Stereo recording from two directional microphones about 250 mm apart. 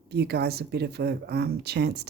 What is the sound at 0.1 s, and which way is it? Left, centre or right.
Speech, right.